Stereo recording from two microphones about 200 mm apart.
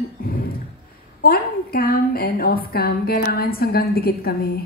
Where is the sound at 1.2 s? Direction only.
50° left (ahead or behind).